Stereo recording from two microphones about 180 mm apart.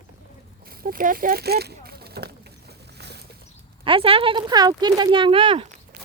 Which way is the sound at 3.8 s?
30° right (ahead or behind).